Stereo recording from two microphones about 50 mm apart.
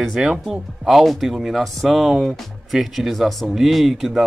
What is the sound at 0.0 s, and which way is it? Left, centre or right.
Speech, centre.